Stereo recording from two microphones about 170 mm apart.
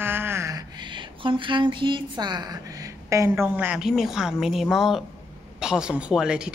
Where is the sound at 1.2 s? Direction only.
30° right (ahead or behind).